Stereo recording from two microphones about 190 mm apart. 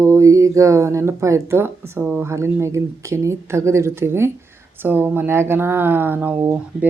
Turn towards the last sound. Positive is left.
turn(degrees=-10)  # may be behind; listen again after turning